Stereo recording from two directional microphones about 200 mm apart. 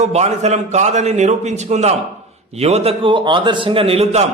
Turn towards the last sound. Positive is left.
turn(degrees=-30)  # may be behind; listen again after turning